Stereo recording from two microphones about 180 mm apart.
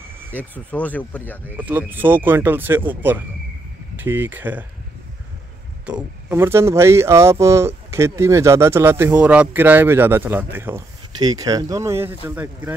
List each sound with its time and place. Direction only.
0.3 s speech: 10° left (ahead or behind)
1.6 s speech: 10° right (ahead or behind)
6.2 s speech: 15° right (ahead or behind)